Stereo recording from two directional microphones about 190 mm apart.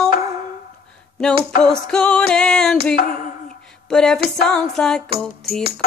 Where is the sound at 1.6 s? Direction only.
5° left (ahead or behind).